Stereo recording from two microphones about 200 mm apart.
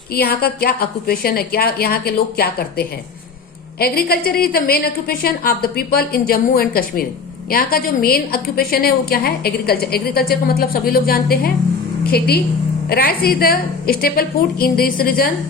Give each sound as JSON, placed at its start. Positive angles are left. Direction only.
{"t": 0.1, "sound": "a woman's voice", "side_deg": 50}